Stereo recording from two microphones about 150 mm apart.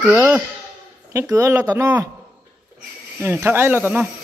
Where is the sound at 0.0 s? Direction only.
15° right (ahead or behind).